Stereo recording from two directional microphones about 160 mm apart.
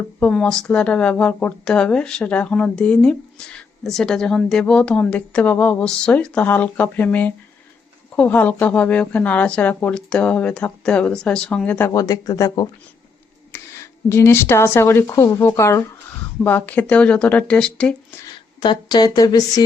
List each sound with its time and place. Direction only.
0.2 s speech: 5° left (ahead or behind)
11.9 s speech: 20° left (ahead or behind); by 17.9 s 5° left (ahead or behind)
18.6 s speech: 30° left (ahead or behind)